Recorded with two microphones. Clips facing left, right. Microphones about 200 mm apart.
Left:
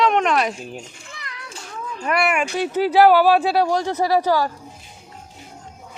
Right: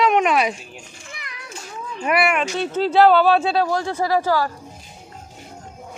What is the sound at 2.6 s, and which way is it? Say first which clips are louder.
Speech: left 1 dB; 15° left (ahead or behind).